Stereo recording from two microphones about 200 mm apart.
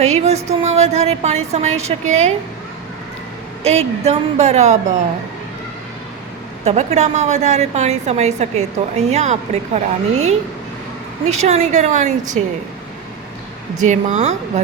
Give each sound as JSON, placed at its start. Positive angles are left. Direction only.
{"t": 0.0, "sound": "music", "side_deg": -30}
{"t": 0.6, "sound": "a woman's voice", "side_deg": -35}
{"t": 3.6, "sound": "a woman's voice", "side_deg": -30}
{"t": 6.7, "sound": "a woman's voice", "side_deg": -35}
{"t": 13.8, "sound": "a woman's voice", "side_deg": -35}